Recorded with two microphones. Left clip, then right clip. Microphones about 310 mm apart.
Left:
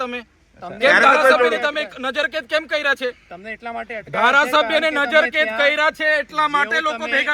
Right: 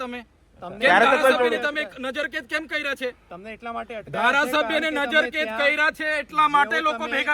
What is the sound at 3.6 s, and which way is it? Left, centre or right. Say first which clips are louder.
Speech: left 2 dB; left.